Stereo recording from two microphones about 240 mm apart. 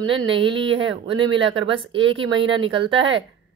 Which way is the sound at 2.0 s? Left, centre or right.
Right.